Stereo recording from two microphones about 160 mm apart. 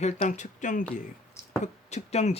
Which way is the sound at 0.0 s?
45° left (ahead or behind).